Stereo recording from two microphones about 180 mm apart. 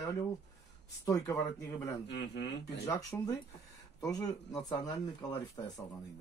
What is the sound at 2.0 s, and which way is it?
Speech, 75° left (ahead or behind).